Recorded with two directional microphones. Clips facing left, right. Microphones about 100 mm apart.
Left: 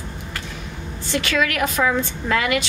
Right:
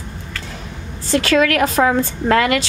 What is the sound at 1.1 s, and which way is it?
A woman's voice, 40° right (ahead or behind).